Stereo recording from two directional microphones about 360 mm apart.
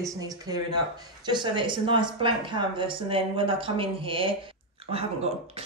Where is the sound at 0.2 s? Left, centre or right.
Centre.